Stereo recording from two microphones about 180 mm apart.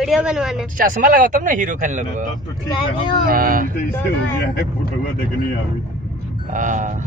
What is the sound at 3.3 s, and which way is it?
Speech, 50° right (ahead or behind).